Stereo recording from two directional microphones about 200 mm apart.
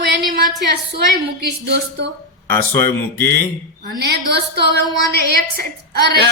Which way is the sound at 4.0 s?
55° right (ahead or behind).